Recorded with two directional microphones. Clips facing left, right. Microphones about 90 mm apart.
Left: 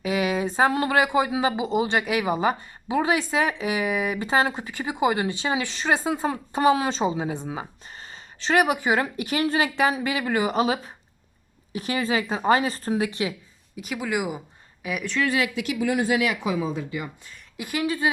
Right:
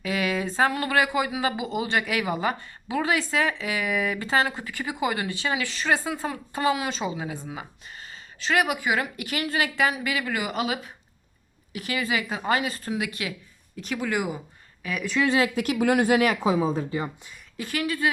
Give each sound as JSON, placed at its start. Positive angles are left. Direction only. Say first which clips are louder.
{"t": 0.0, "sound": "a woman's voice", "louder": "left 3 dB", "side_deg": 20}
{"t": 13.7, "sound": "speech", "louder": "even", "side_deg": 5}
{"t": 15.2, "sound": "speech", "louder": "right 2 dB", "side_deg": -25}
{"t": 15.5, "sound": "speech", "louder": "right 2 dB", "side_deg": -50}
{"t": 16.4, "sound": "speech", "louder": "right 3 dB", "side_deg": -30}
{"t": 17.6, "sound": "speech", "louder": "left 1 dB", "side_deg": 20}